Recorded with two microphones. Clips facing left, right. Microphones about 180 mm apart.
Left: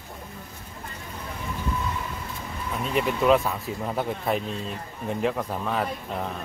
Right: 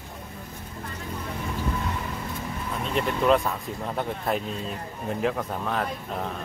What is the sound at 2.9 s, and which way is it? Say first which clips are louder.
Speech: left 1 dB; 5° left (ahead or behind).